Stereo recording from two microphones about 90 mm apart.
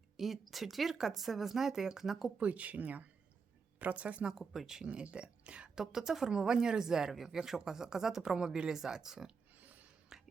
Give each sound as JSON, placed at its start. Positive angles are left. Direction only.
{"t": 0.2, "sound": "speech", "side_deg": 0}
{"t": 2.4, "sound": "speech", "side_deg": -15}
{"t": 10.1, "sound": "whispering", "side_deg": -5}